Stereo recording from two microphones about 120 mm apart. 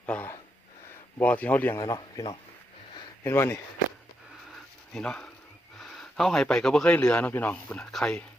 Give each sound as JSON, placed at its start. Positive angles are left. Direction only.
{"t": 0.0, "sound": "gasp", "side_deg": 15}
{"t": 1.2, "sound": "speech", "side_deg": 15}
{"t": 1.8, "sound": "a man's voice", "side_deg": 30}
{"t": 3.2, "sound": "speech", "side_deg": 25}
{"t": 4.5, "sound": "a sound", "side_deg": 5}
{"t": 5.8, "sound": "a man's voice", "side_deg": 0}